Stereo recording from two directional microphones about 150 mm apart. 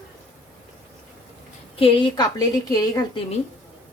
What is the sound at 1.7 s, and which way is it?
Speech, 40° left (ahead or behind).